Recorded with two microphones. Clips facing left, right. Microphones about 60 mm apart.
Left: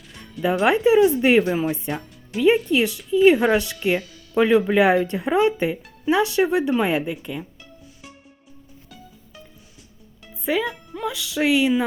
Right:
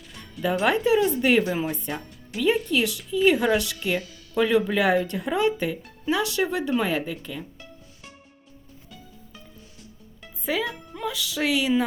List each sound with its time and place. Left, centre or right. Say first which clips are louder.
0.1 s music: left 3 dB; centre
0.6 s speech: left 5 dB; left
1.4 s speech: left 4 dB; centre
1.9 s music: left 4 dB; centre
2.7 s speech: left 5 dB; left
10.4 s a woman's voice: left 4 dB; centre